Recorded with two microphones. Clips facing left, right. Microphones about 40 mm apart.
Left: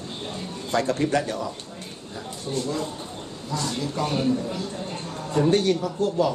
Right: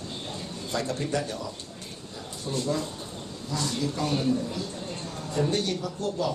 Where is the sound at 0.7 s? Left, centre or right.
Left.